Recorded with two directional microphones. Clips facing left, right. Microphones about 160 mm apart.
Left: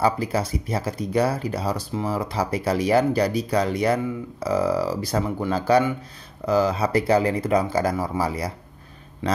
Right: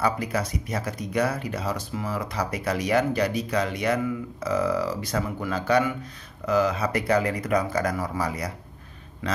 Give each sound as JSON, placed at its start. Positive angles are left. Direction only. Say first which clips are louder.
{"t": 0.0, "sound": "speech", "louder": "left 3 dB", "side_deg": 30}